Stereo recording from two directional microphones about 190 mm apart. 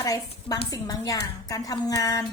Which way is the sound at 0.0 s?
20° left (ahead or behind).